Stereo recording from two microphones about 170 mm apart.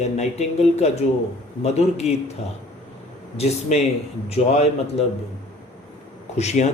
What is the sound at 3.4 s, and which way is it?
Speech, 40° left (ahead or behind).